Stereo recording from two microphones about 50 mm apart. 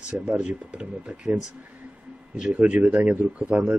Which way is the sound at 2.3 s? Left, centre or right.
Centre.